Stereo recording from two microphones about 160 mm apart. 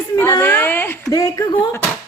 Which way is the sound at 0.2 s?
15° left (ahead or behind).